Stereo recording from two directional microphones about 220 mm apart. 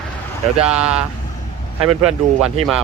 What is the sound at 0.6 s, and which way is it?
Speech, 5° right (ahead or behind).